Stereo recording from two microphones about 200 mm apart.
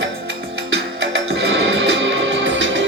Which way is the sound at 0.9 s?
65° right (ahead or behind).